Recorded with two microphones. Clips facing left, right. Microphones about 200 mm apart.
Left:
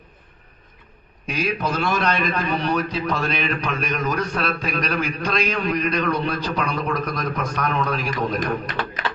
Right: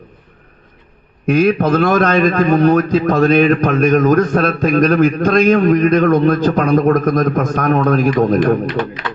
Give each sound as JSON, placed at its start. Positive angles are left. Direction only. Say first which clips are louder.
{"t": 1.3, "sound": "a man's voice", "louder": "right 12 dB", "side_deg": -55}